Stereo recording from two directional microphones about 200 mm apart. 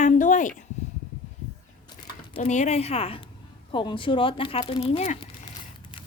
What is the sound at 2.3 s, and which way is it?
Speech, 35° left (ahead or behind).